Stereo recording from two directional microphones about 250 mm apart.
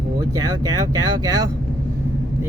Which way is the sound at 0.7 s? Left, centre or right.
Centre.